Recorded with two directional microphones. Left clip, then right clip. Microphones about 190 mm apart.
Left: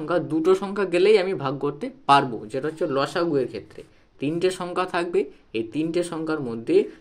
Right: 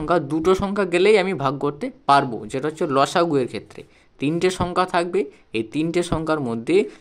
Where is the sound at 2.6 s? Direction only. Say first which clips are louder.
Right 4 dB; 35° right (ahead or behind).